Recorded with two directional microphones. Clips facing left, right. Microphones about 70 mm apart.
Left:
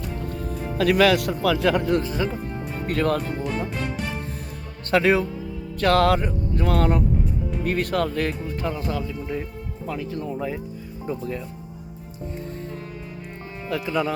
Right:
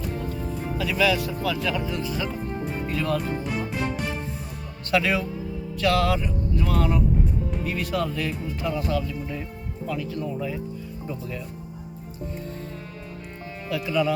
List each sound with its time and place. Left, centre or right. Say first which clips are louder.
0.8 s speech: left 6 dB; left
2.0 s speech: left 4 dB; left
2.8 s speech: left 5 dB; left
4.9 s speech: left 4 dB; left
5.8 s speech: left 4 dB; left
13.7 s speech: even; left